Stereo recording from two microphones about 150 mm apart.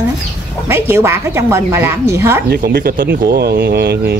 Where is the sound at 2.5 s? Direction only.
90° right.